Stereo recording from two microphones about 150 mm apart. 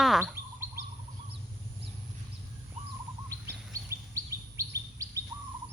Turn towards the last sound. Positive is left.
turn(degrees=-20)  # may be behind; listen again after turning